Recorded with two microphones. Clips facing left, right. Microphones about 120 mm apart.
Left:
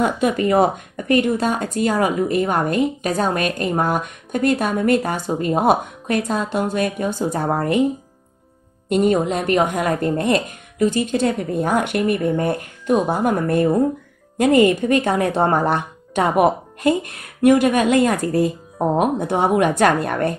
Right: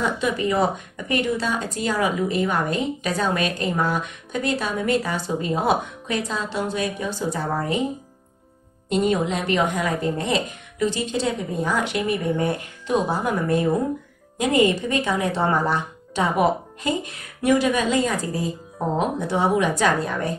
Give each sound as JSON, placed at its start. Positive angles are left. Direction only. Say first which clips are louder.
{"t": 0.0, "sound": "speech", "louder": "left 5 dB", "side_deg": 50}
{"t": 8.8, "sound": "speech", "louder": "left 4 dB", "side_deg": 55}